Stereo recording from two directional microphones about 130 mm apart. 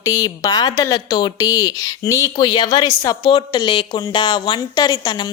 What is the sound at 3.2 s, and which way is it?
A woman's voice, 40° left (ahead or behind).